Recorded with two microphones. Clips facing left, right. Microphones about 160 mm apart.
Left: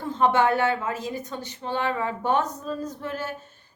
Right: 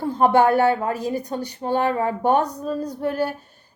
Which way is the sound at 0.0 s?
35° right (ahead or behind).